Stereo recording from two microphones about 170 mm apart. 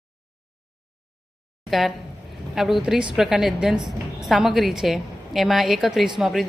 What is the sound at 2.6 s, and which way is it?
A woman's voice, centre (ahead or behind).